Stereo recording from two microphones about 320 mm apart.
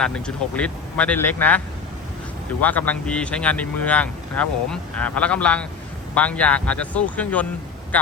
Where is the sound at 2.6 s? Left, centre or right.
Centre.